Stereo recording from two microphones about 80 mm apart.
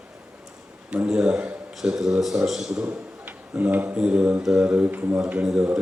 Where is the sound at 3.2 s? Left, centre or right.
Right.